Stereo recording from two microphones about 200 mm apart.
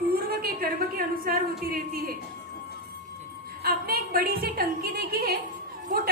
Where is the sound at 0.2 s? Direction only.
50° right (ahead or behind).